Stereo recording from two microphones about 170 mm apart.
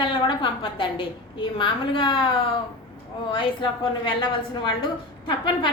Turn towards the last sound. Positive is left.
turn(degrees=30)  # may be behind; listen again after turning